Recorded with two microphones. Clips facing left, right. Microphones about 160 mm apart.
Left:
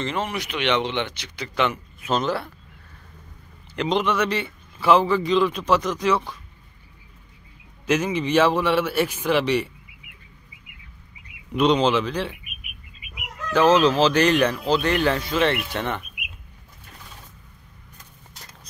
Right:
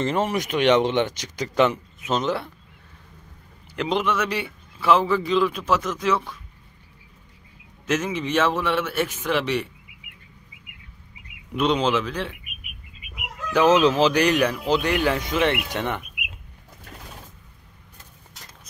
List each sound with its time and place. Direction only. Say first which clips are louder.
0.0 s speech: right 4 dB; 40° right (ahead or behind)
2.0 s speech: left 2 dB; 20° right (ahead or behind)
3.7 s a man's voice: left 1 dB; 5° right (ahead or behind)
7.8 s a man's voice: left 2 dB; centre (ahead or behind)
11.5 s a man's voice: left 3 dB; 5° right (ahead or behind)
13.5 s speech: even; 15° right (ahead or behind)